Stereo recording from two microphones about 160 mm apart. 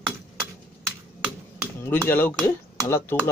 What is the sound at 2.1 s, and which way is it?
Speech, 10° left (ahead or behind).